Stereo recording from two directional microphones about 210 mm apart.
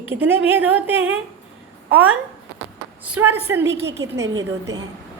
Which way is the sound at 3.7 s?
55° right (ahead or behind).